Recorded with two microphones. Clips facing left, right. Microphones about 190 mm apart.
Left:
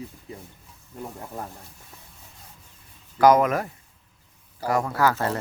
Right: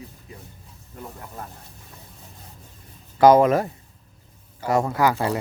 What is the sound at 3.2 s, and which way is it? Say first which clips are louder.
Speech: right 3 dB; 30° right (ahead or behind).